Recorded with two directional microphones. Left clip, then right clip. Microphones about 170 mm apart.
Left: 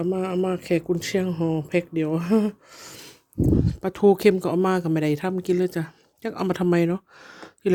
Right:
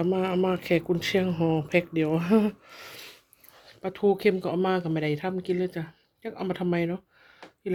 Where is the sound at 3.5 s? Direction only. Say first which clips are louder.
Left 9 dB; 40° left (ahead or behind).